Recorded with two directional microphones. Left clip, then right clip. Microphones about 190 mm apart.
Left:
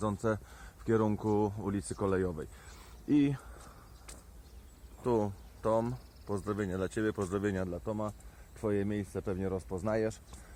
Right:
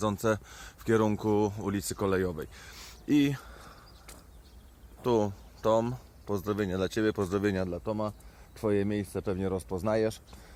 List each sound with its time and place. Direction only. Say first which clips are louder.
0.0 s speech: right 5 dB; 15° right (ahead or behind)
5.0 s speech: right 4 dB; 25° right (ahead or behind)